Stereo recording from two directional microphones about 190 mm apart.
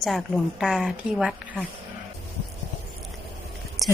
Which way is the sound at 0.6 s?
5° right (ahead or behind).